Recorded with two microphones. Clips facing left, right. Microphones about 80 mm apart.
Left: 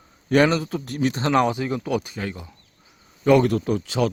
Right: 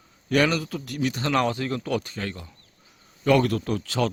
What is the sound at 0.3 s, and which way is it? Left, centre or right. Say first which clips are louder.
Speech: left 4 dB; left.